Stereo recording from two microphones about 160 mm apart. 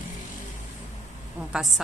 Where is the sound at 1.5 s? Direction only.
Centre (ahead or behind).